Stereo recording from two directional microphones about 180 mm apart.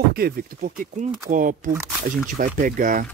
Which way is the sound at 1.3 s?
45° right (ahead or behind).